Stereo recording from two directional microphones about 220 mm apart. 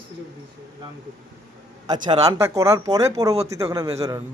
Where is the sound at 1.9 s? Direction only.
15° right (ahead or behind).